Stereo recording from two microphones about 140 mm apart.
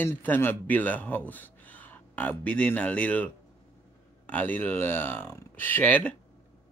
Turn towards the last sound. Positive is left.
turn(degrees=10)  # may be behind; listen again after turning